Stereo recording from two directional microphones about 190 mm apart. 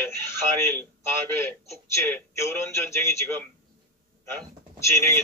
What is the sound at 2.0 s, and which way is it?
A man's voice, 15° left (ahead or behind).